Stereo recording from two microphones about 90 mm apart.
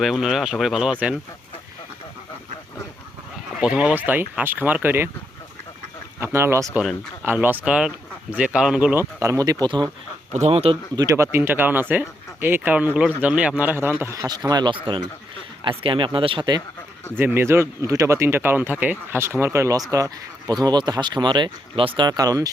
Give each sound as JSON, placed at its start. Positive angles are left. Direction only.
{"t": 0.0, "sound": "speech", "side_deg": -5}
{"t": 3.6, "sound": "speech", "side_deg": -15}
{"t": 6.1, "sound": "speech", "side_deg": -30}
{"t": 7.3, "sound": "speech", "side_deg": -20}
{"t": 9.0, "sound": "speech", "side_deg": -30}
{"t": 9.6, "sound": "speech", "side_deg": -55}
{"t": 10.5, "sound": "speech", "side_deg": -90}
{"t": 11.1, "sound": "speech", "side_deg": -30}
{"t": 14.3, "sound": "speech", "side_deg": -50}
{"t": 17.2, "sound": "speech", "side_deg": -25}
{"t": 19.9, "sound": "speech", "side_deg": -40}
{"t": 20.5, "sound": "speech", "side_deg": -50}
{"t": 22.0, "sound": "speech", "side_deg": -45}